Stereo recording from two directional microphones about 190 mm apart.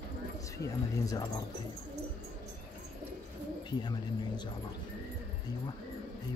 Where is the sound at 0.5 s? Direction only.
15° left (ahead or behind).